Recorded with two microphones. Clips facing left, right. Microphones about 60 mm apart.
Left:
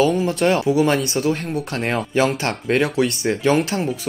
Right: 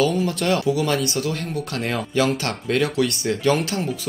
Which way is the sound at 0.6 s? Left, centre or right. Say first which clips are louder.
Left 4 dB; left.